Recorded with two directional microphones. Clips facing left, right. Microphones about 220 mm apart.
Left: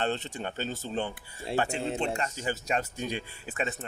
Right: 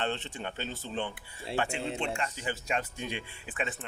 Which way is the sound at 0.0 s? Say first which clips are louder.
Left 3 dB; 40° left (ahead or behind).